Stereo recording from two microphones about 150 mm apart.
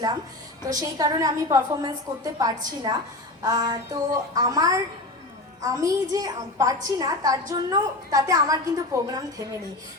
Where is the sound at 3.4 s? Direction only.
25° right (ahead or behind).